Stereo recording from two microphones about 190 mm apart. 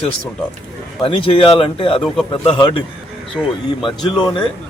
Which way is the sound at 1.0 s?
30° left (ahead or behind).